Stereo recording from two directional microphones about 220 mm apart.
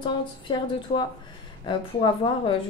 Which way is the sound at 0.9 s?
35° left (ahead or behind).